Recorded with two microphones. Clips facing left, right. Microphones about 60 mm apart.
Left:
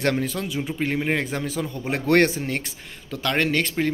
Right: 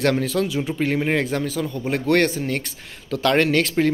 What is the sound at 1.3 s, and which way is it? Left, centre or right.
Speech, centre.